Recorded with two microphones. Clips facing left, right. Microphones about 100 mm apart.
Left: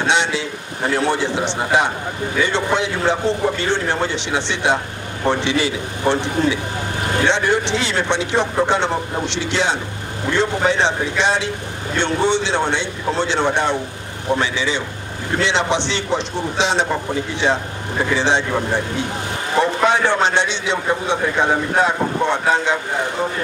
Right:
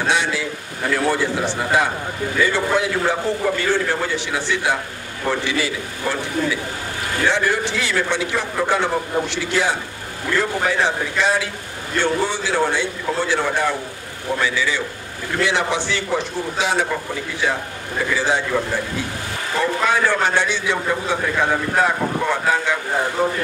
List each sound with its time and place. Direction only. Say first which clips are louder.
0.0 s a man's voice: left 2 dB; 25° left (ahead or behind)
18.1 s a man's voice: left 2 dB; 25° left (ahead or behind)